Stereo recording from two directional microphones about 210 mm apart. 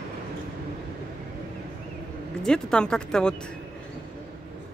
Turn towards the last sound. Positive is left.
turn(degrees=5)  # may be behind; listen again after turning